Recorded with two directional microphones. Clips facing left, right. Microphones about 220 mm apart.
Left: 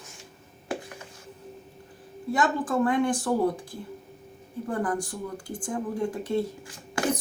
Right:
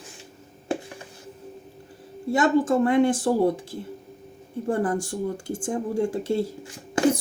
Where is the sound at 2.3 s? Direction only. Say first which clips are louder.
Right 6 dB; 25° right (ahead or behind).